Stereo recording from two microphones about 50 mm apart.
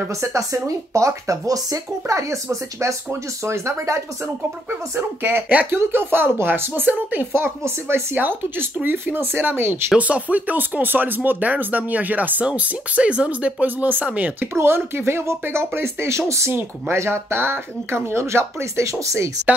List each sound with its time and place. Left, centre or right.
0.1 s speech: right
5.2 s speech: right
7.3 s speech: right
8.2 s speech: right
9.9 s speech: right
14.4 s speech: right
16.9 s speech: right